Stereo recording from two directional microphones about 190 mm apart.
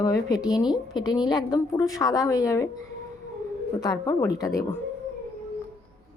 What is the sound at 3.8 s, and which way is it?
A woman's voice, 20° left (ahead or behind).